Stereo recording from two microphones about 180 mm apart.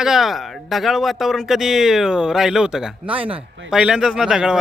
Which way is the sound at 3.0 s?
30° right (ahead or behind).